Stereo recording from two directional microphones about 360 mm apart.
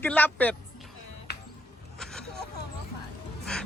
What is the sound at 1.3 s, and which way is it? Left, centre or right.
Music, left.